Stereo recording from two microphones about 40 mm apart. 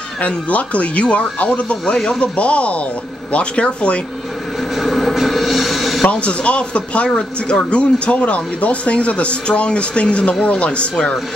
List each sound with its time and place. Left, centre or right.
0.2 s speech: left
4.7 s a sound: centre
5.1 s music: centre
6.0 s speech: left